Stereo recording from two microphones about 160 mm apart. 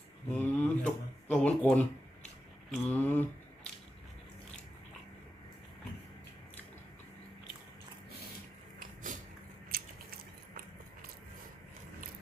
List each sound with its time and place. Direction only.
0.3 s speech: 10° left (ahead or behind)
9.7 s biting: 65° right (ahead or behind)